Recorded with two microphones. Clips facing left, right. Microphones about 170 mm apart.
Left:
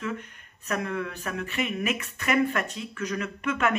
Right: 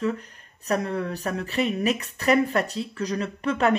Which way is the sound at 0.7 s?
35° right (ahead or behind).